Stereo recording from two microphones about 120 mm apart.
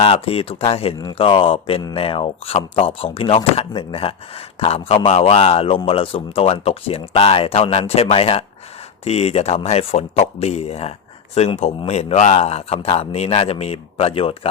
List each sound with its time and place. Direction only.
0.0 s a man's voice: 55° left (ahead or behind)